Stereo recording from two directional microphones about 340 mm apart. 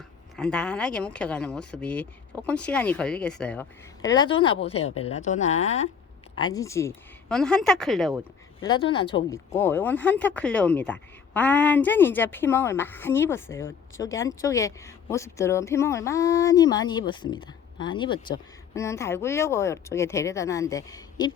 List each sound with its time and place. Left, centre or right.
0.3 s a woman's voice: centre
8.7 s a woman's voice: centre